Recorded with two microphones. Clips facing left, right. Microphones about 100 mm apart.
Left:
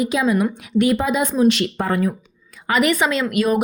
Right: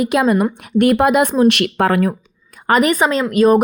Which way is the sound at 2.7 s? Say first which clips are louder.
Right 4 dB; 40° right (ahead or behind).